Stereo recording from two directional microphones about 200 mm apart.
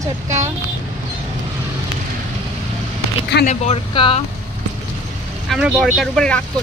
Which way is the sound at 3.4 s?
30° left (ahead or behind).